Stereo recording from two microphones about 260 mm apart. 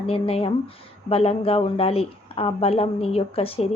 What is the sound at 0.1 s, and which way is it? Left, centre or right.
Speech, left.